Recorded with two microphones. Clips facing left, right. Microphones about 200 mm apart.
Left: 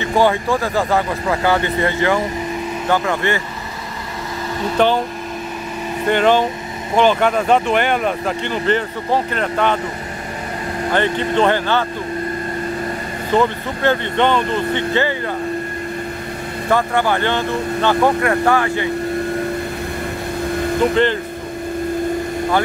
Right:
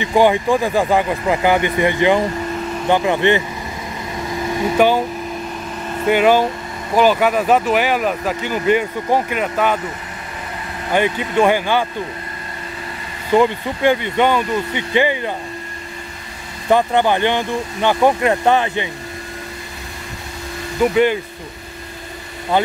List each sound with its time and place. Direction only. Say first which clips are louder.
0.0 s speech: right 2 dB; 15° right (ahead or behind)
4.6 s speech: right 1 dB; 10° right (ahead or behind)
6.0 s speech: right 1 dB; 10° right (ahead or behind)
10.9 s speech: even; 10° right (ahead or behind)
13.3 s speech: right 2 dB; 15° right (ahead or behind)
16.6 s speech: right 3 dB; 20° right (ahead or behind)
20.9 s speech: right 1 dB; 10° right (ahead or behind)